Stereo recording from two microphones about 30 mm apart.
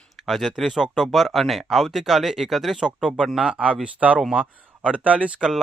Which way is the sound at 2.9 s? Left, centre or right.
Right.